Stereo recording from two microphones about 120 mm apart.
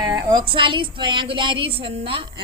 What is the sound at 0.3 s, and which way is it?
A woman's voice, 40° right (ahead or behind).